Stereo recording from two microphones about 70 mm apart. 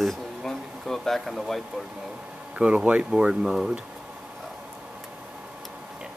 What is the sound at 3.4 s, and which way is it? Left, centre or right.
Speech, centre.